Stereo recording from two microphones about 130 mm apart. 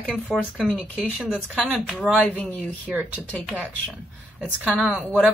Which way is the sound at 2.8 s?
10° right (ahead or behind).